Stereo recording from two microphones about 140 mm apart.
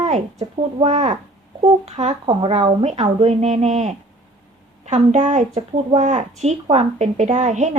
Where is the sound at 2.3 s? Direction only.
40° right (ahead or behind); by 7.7 s 60° right (ahead or behind).